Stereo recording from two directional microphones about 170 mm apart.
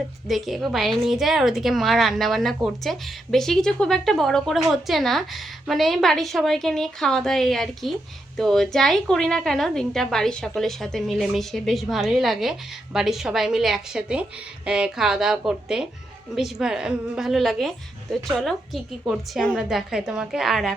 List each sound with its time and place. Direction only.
0.3 s a woman's voice: centre (ahead or behind)